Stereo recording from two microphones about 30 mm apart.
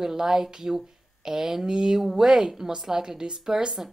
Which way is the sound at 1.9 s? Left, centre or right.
Centre.